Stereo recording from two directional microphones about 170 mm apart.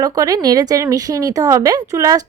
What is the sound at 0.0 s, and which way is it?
Speech, 20° right (ahead or behind).